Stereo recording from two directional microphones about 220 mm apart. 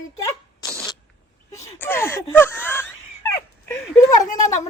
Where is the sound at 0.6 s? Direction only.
15° left (ahead or behind).